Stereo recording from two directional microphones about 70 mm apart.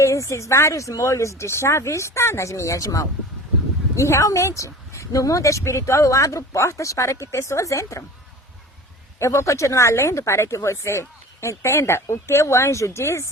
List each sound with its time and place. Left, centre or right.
0.0 s speech: left
9.1 s speech: left